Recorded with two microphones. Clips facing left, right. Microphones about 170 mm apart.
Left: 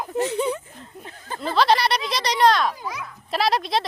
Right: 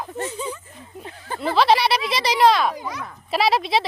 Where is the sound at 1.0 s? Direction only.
20° right (ahead or behind).